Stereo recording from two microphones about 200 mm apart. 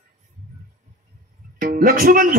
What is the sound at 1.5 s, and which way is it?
Speech, 45° right (ahead or behind).